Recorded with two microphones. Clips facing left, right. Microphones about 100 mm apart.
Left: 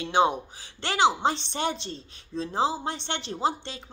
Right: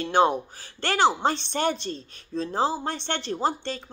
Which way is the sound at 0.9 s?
15° left (ahead or behind).